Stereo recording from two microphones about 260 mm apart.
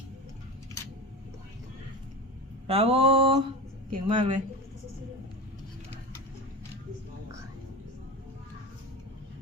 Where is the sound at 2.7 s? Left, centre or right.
Right.